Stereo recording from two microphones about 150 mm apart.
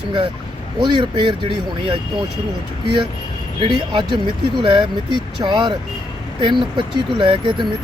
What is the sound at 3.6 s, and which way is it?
Speech, 30° right (ahead or behind).